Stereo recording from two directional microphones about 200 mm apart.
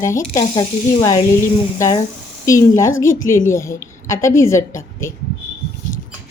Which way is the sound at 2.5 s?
15° left (ahead or behind).